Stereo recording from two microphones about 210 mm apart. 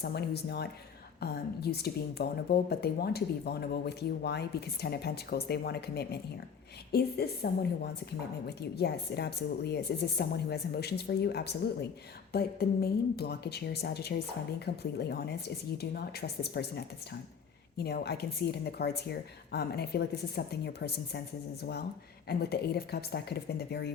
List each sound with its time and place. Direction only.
0.0 s a woman's voice: 50° left (ahead or behind)